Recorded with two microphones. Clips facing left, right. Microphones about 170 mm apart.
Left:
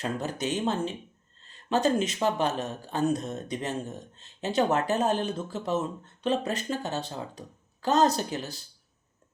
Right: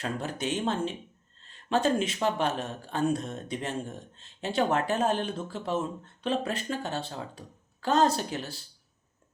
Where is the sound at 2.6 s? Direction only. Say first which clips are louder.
Left 1 dB; 40° left (ahead or behind).